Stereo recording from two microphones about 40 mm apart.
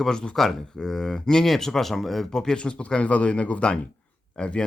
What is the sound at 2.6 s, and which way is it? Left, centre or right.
Speech, left.